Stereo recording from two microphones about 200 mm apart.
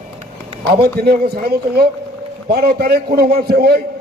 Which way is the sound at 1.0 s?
50° right (ahead or behind).